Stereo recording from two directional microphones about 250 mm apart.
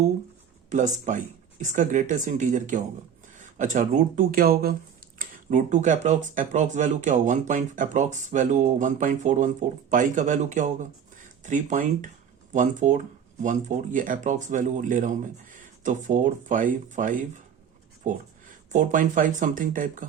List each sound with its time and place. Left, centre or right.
0.7 s speech: right